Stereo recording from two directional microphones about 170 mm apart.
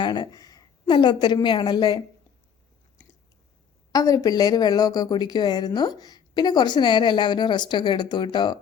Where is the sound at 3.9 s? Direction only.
20° left (ahead or behind).